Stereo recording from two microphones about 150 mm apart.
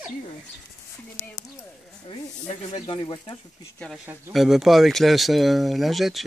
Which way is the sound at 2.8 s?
30° left (ahead or behind).